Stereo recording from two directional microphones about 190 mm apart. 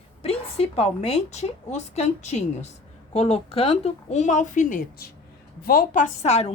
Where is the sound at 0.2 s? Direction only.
30° left (ahead or behind).